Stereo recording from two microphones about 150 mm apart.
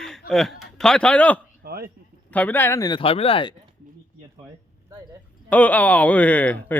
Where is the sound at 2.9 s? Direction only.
40° left (ahead or behind).